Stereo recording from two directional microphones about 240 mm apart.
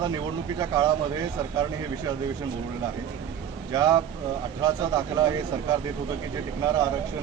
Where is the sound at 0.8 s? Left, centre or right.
Centre.